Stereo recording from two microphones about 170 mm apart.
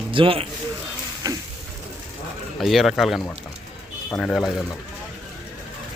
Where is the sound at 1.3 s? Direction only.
20° right (ahead or behind).